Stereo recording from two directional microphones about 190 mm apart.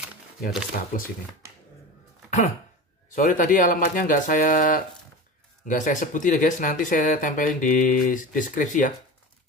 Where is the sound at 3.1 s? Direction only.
45° left (ahead or behind).